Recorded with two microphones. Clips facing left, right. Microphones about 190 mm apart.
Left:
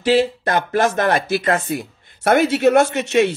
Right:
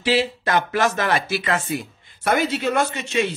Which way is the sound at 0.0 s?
50° left (ahead or behind).